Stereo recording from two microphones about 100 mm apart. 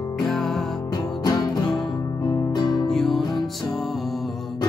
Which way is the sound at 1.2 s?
40° left (ahead or behind).